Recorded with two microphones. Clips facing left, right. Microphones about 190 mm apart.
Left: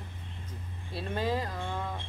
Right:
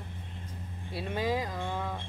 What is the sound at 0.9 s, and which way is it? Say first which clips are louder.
Speech: even; 10° right (ahead or behind).